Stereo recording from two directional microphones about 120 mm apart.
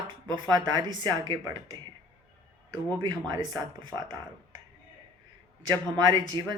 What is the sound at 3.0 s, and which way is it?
Speech, 35° right (ahead or behind).